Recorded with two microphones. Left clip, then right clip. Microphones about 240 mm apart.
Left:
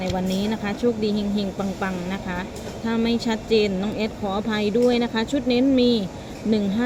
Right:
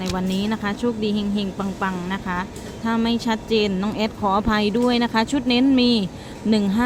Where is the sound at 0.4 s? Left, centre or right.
Centre.